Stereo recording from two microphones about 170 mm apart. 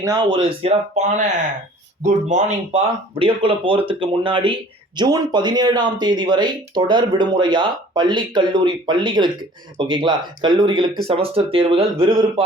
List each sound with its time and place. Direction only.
0.0 s speech: 20° right (ahead or behind)